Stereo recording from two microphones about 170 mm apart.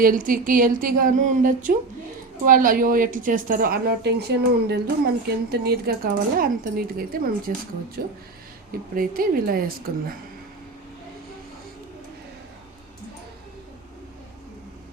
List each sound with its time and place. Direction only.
0.0 s a woman's voice: 55° right (ahead or behind)